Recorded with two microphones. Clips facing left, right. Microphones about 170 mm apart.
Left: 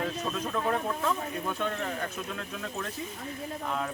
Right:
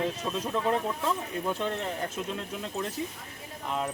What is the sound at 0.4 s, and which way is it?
Speech, 20° right (ahead or behind).